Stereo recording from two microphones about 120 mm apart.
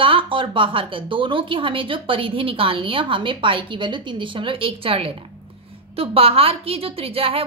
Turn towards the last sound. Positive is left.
turn(degrees=-55)  # may be behind; listen again after turning